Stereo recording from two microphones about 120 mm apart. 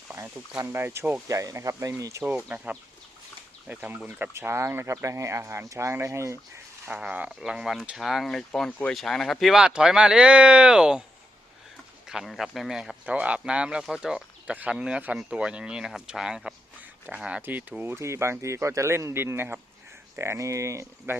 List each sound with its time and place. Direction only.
0.1 s speech: 25° right (ahead or behind)
2.2 s speech: 10° right (ahead or behind)
6.8 s speech: 10° right (ahead or behind)
12.0 s speech: centre (ahead or behind); by 21.2 s 25° right (ahead or behind)